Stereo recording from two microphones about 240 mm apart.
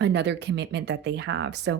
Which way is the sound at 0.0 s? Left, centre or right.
Right.